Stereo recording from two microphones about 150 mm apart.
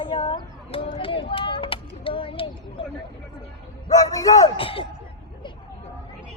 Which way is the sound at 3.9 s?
25° left (ahead or behind).